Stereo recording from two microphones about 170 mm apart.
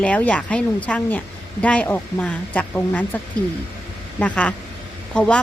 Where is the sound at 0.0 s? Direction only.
10° left (ahead or behind).